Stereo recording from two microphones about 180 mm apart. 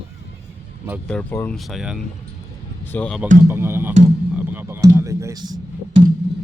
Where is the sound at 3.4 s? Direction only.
15° right (ahead or behind).